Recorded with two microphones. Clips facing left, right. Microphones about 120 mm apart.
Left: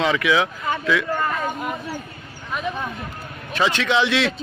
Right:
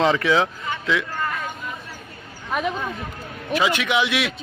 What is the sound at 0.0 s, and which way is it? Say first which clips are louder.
Speech: right 1 dB; 35° right (ahead or behind).